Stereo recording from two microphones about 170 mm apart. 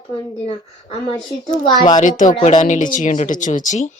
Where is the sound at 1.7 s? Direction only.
25° left (ahead or behind).